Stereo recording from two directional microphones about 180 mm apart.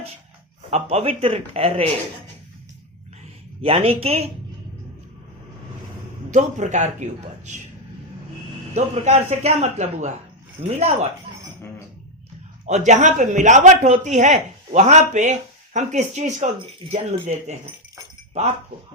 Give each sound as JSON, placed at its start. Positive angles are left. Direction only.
{"t": 0.7, "sound": "speech", "side_deg": -35}
{"t": 3.6, "sound": "speech", "side_deg": -30}
{"t": 6.3, "sound": "speech", "side_deg": -40}
{"t": 8.7, "sound": "speech", "side_deg": -40}
{"t": 12.6, "sound": "speech", "side_deg": -40}